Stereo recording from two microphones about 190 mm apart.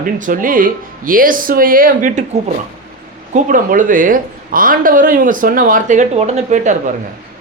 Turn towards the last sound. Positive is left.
turn(degrees=-40)  # may be behind; listen again after turning